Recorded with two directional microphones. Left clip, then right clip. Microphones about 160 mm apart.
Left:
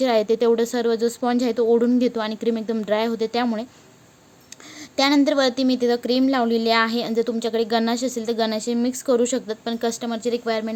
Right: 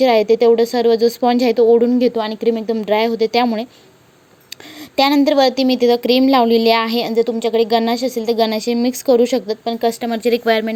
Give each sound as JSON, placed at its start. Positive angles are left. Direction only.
{"t": 0.0, "sound": "speech", "side_deg": -5}
{"t": 4.9, "sound": "speech", "side_deg": -10}
{"t": 7.1, "sound": "speech", "side_deg": 0}
{"t": 10.2, "sound": "a woman's voice", "side_deg": -25}